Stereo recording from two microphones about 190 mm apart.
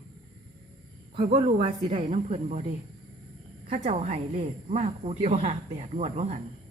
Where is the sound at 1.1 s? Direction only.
30° right (ahead or behind).